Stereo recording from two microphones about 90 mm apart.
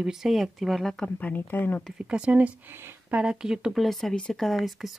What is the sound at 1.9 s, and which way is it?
Speech, 15° right (ahead or behind).